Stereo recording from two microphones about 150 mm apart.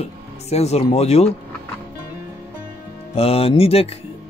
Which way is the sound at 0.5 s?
45° left (ahead or behind).